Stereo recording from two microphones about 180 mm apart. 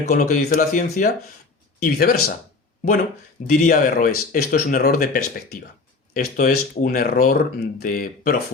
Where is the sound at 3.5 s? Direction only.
50° left (ahead or behind).